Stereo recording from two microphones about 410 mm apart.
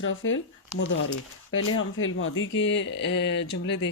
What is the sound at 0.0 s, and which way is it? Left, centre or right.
Speech, left.